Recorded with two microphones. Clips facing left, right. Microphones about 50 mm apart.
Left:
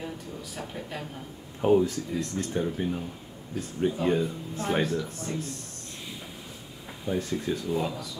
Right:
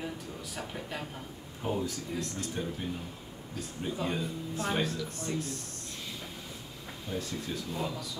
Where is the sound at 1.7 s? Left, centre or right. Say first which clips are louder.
Left 11 dB; left.